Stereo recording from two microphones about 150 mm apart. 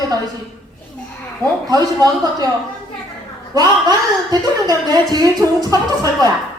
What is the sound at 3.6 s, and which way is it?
A woman's voice, 25° right (ahead or behind).